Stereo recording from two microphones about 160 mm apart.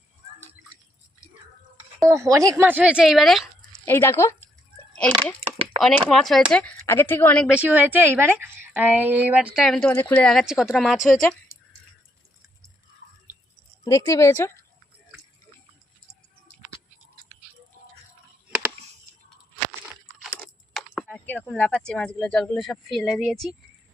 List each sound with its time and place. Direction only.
2.0 s a woman's voice: 20° right (ahead or behind); by 3.5 s centre (ahead or behind)
3.8 s speech: 15° left (ahead or behind)
5.1 s a sound: 30° right (ahead or behind)
6.1 s speech: 5° left (ahead or behind)
7.4 s a woman's voice: 10° right (ahead or behind)
9.6 s speech: 5° left (ahead or behind)
13.8 s a woman's voice: 20° left (ahead or behind)
21.1 s speech: 10° left (ahead or behind)